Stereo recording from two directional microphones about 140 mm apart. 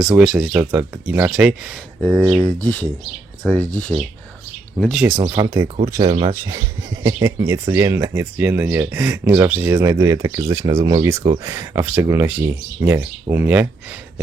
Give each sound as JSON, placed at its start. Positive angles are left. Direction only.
{"t": 0.0, "sound": "speech", "side_deg": -5}
{"t": 2.6, "sound": "speech", "side_deg": 10}
{"t": 4.8, "sound": "speech", "side_deg": 0}
{"t": 5.0, "sound": "speech", "side_deg": -15}
{"t": 6.1, "sound": "speech", "side_deg": -45}
{"t": 6.3, "sound": "speech", "side_deg": -20}